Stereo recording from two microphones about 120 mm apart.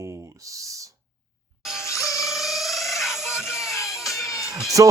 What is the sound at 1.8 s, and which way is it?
Music, 25° left (ahead or behind).